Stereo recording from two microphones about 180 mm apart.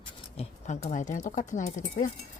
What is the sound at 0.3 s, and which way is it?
Speech, 40° left (ahead or behind).